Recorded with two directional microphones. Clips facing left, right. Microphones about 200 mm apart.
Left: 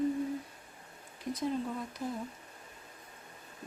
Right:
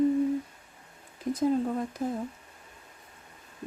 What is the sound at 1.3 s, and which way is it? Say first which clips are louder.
Speech: right 8 dB; 50° right (ahead or behind).